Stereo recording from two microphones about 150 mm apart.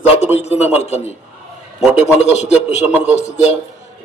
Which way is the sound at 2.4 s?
45° left (ahead or behind).